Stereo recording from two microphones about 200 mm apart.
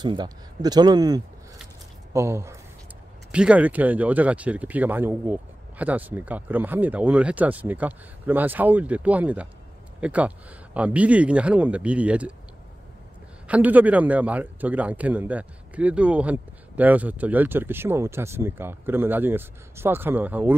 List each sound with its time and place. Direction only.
0.0 s a man's voice: 20° right (ahead or behind); by 12.4 s 5° right (ahead or behind)
13.5 s a man's voice: 10° right (ahead or behind)